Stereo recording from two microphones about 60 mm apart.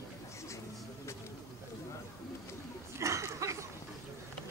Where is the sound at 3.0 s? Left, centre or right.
Right.